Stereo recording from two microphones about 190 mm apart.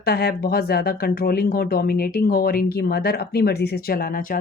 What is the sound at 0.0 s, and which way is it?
Speech, 55° left (ahead or behind).